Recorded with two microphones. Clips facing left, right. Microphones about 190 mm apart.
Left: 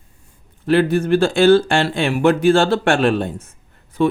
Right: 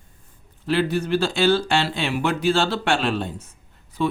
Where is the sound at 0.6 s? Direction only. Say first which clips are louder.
Left 6 dB; 55° left (ahead or behind).